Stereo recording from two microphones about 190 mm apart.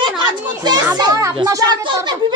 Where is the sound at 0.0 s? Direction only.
25° right (ahead or behind).